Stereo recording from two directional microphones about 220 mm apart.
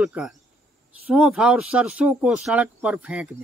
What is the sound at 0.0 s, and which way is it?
Speech, centre (ahead or behind).